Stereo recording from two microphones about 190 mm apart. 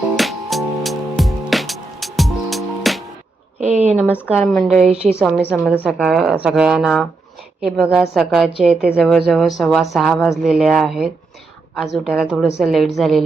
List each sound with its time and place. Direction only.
0.2 s music: centre (ahead or behind)
3.6 s speech: 35° right (ahead or behind)
4.4 s a woman's voice: 5° left (ahead or behind)
6.0 s speech: 5° right (ahead or behind)